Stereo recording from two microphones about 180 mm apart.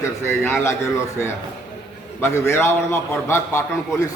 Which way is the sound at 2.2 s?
15° left (ahead or behind).